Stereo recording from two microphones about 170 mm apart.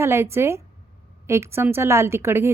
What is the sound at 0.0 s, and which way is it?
Speech, 15° right (ahead or behind).